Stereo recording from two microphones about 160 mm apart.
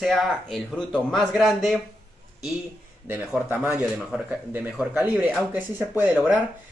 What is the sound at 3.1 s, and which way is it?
Speech, 15° right (ahead or behind).